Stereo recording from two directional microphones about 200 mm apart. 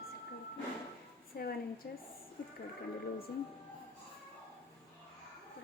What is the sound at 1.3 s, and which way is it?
Speech, 50° left (ahead or behind).